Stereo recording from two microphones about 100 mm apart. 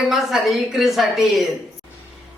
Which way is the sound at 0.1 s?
Centre (ahead or behind).